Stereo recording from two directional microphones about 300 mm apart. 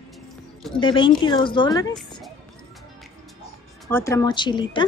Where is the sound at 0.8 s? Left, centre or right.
Centre.